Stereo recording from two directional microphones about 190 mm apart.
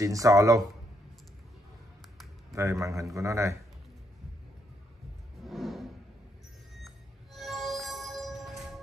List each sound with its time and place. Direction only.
0.0 s speech: 15° right (ahead or behind)
2.5 s speech: 15° right (ahead or behind)
5.4 s a sound: centre (ahead or behind)
7.3 s music: centre (ahead or behind)